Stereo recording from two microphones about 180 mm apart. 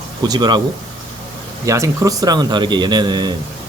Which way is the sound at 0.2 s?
20° right (ahead or behind).